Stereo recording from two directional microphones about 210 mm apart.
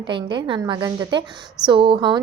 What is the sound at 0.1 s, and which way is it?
A child's voice, 25° right (ahead or behind).